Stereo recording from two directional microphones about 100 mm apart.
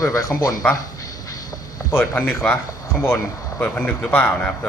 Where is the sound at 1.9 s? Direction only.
20° left (ahead or behind).